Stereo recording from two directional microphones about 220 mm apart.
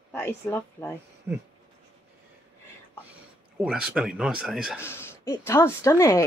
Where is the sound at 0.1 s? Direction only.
10° left (ahead or behind).